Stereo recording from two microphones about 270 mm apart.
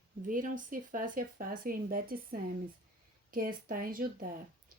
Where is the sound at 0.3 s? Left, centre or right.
Right.